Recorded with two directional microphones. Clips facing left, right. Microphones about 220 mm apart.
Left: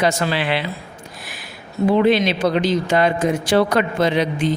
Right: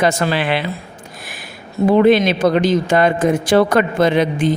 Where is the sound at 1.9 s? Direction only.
50° right (ahead or behind).